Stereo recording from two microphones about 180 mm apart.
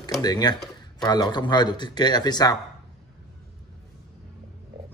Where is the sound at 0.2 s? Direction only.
20° left (ahead or behind).